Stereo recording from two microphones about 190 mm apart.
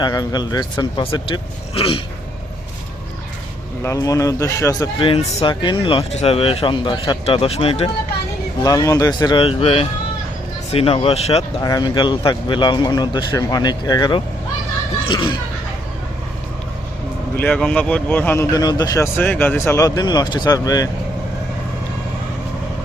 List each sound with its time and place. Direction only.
0.0 s speech: 20° left (ahead or behind)
3.8 s speech: 15° left (ahead or behind); by 7.9 s 30° left (ahead or behind)
8.6 s speech: 15° left (ahead or behind); by 11.4 s 35° left (ahead or behind)
11.6 s speech: 20° left (ahead or behind)
17.3 s speech: 10° left (ahead or behind)